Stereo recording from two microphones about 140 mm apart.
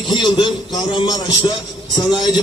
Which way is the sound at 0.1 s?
35° left (ahead or behind).